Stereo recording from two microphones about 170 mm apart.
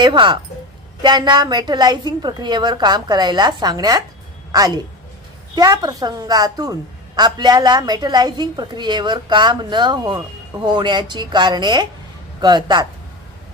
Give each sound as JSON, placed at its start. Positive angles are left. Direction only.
{"t": 0.0, "sound": "a woman's voice", "side_deg": -25}